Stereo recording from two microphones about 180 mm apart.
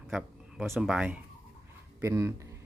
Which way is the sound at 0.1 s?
Centre (ahead or behind).